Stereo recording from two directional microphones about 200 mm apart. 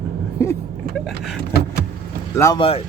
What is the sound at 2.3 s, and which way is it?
Speech, 15° left (ahead or behind).